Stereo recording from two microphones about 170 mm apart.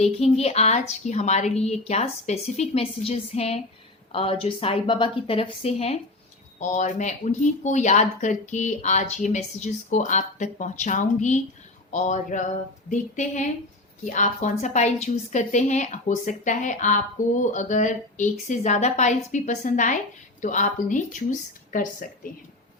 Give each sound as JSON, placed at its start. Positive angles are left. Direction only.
{"t": 0.0, "sound": "a woman's voice", "side_deg": 40}